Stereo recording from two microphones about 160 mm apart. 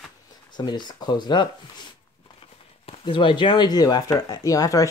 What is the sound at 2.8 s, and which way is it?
Speech, 30° left (ahead or behind).